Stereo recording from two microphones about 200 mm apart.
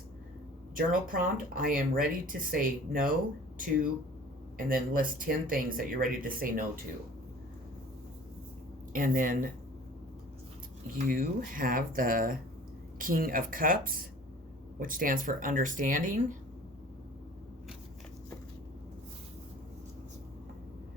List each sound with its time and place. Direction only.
0.8 s speech: 45° right (ahead or behind)
4.5 s speech: 45° right (ahead or behind)
8.9 s speech: 40° right (ahead or behind)
10.9 s speech: 45° right (ahead or behind)